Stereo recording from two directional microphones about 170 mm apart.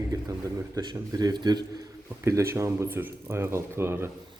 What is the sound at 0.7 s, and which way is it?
Speech, 25° right (ahead or behind).